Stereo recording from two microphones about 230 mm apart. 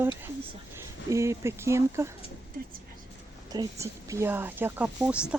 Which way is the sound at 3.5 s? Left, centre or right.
Centre.